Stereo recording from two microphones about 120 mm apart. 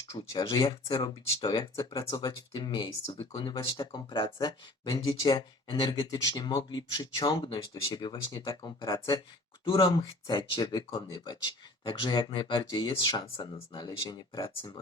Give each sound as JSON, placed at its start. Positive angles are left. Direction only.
{"t": 0.3, "sound": "speech", "side_deg": 40}